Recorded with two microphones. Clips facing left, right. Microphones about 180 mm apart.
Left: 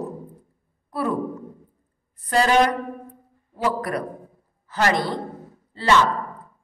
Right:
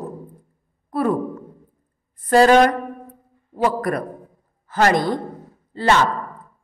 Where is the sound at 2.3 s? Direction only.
45° right (ahead or behind).